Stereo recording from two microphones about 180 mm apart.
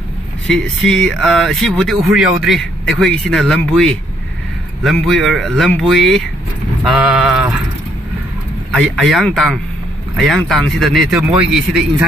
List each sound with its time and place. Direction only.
0.5 s speech: centre (ahead or behind)
8.7 s speech: centre (ahead or behind)